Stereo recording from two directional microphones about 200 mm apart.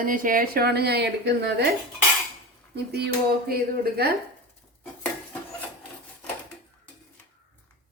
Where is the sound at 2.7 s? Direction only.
55° right (ahead or behind).